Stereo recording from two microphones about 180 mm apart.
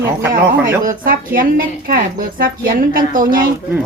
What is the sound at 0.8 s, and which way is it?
Speech, 50° right (ahead or behind).